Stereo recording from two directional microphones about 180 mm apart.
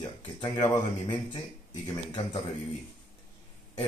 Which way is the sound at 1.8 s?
25° left (ahead or behind).